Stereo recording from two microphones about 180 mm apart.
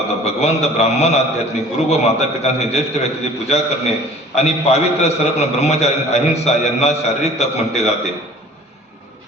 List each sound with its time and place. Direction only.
0.3 s a man's voice: 35° left (ahead or behind)